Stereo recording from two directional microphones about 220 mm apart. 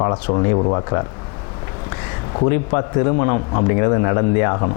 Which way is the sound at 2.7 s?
25° left (ahead or behind).